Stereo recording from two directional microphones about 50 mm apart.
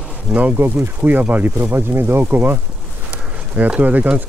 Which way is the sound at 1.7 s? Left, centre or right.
Right.